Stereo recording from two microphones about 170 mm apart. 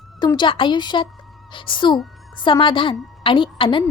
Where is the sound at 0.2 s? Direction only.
25° left (ahead or behind).